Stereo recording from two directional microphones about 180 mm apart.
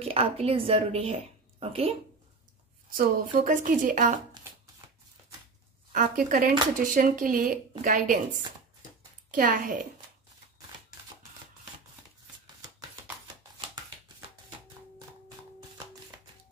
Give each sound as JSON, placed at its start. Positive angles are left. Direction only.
{"t": 0.0, "sound": "a woman's voice", "side_deg": -35}
{"t": 2.9, "sound": "speech", "side_deg": -50}
{"t": 5.9, "sound": "speech", "side_deg": -50}
{"t": 9.3, "sound": "speech", "side_deg": -50}